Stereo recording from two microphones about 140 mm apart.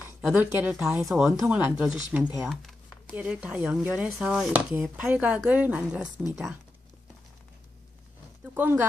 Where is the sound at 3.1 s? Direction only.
10° right (ahead or behind).